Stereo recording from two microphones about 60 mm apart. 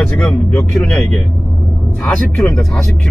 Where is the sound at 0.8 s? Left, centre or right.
Centre.